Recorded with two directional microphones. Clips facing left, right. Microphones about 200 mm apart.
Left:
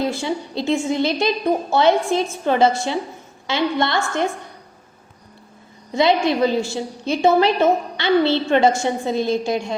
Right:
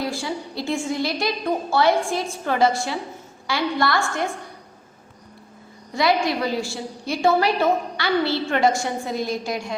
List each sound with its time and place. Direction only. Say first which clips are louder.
0.0 s a woman's voice: left 4 dB; 20° left (ahead or behind)
5.9 s a woman's voice: left 4 dB; 20° left (ahead or behind)